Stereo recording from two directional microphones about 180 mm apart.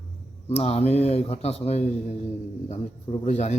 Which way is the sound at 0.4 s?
35° left (ahead or behind).